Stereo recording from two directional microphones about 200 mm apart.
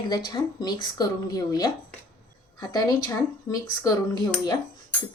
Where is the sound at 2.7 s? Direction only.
20° left (ahead or behind).